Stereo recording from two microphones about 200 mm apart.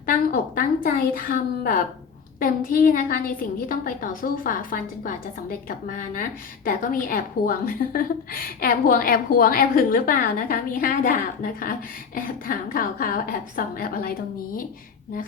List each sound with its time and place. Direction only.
0.0 s a woman's voice: 45° left (ahead or behind)